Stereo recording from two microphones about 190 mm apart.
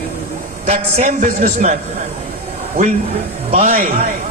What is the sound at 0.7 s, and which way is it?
A man's voice, 40° right (ahead or behind).